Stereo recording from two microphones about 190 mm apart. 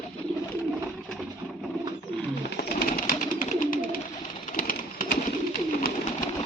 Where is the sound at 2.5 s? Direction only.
55° left (ahead or behind).